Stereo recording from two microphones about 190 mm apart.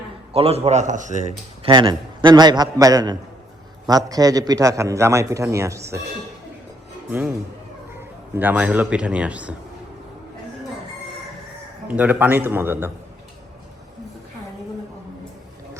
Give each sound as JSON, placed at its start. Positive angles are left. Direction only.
{"t": 0.3, "sound": "a man's voice", "side_deg": -35}
{"t": 1.7, "sound": "a man's voice", "side_deg": -25}
{"t": 7.1, "sound": "a man's voice", "side_deg": -10}
{"t": 8.4, "sound": "a man's voice", "side_deg": -10}
{"t": 11.9, "sound": "a man's voice", "side_deg": -10}